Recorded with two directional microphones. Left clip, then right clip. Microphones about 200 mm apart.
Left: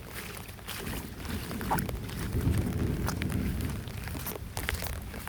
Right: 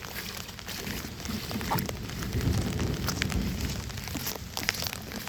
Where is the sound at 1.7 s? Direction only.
10° right (ahead or behind).